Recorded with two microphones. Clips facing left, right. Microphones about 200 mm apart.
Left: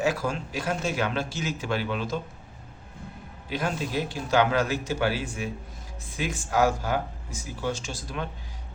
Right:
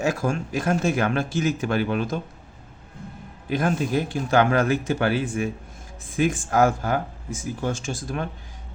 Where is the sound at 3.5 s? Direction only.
50° right (ahead or behind).